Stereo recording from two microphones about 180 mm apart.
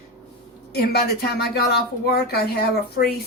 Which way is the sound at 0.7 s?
60° left (ahead or behind).